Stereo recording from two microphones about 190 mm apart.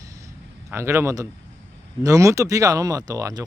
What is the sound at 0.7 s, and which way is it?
Speech, 15° right (ahead or behind).